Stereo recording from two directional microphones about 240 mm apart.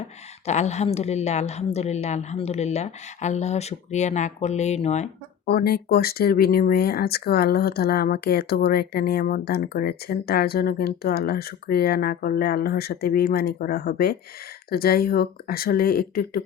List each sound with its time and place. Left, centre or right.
0.4 s a woman's voice: left
5.5 s speech: left